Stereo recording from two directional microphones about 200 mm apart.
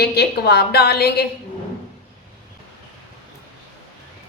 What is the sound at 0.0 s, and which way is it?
A woman's voice, 55° left (ahead or behind).